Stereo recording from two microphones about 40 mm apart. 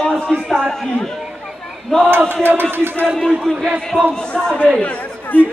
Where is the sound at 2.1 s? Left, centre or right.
Right.